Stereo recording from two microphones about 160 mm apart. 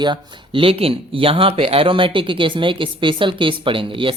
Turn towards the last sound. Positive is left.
turn(degrees=-35)  # may be behind; listen again after turning